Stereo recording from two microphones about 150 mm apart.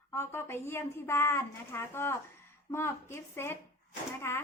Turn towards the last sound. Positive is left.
turn(degrees=15)  # may be behind; listen again after turning